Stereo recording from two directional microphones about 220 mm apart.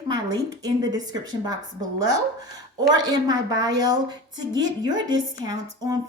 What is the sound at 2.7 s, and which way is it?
A woman's voice, 20° right (ahead or behind).